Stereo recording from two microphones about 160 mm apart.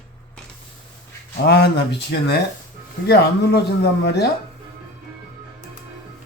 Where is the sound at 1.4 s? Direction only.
90° left.